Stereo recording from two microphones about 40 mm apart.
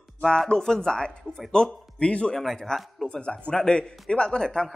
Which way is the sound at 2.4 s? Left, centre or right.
Centre.